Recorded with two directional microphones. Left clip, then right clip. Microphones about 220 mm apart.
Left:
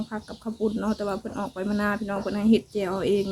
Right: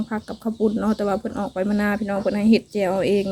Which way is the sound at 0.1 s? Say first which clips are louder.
Right 6 dB; 30° right (ahead or behind).